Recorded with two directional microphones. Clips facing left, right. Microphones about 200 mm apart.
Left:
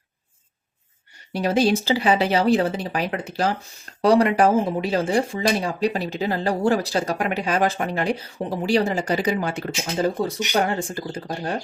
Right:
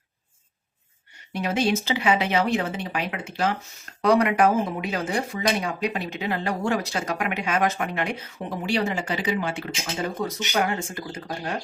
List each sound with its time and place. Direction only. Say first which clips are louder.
1.3 s speech: left 4 dB; 35° left (ahead or behind)